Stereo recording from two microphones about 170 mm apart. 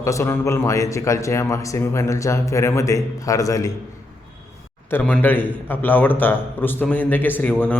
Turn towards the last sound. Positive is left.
turn(degrees=10)  # may be behind; listen again after turning